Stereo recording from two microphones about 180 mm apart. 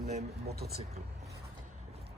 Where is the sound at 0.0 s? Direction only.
40° right (ahead or behind).